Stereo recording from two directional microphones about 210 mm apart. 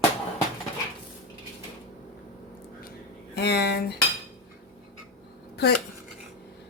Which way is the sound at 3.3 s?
50° left (ahead or behind).